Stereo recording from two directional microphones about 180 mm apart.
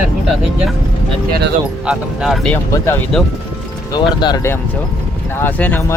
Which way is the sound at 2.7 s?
15° left (ahead or behind).